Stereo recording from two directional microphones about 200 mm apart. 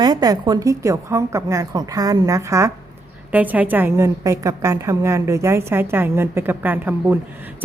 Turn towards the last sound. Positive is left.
turn(degrees=-10)  # may be behind; listen again after turning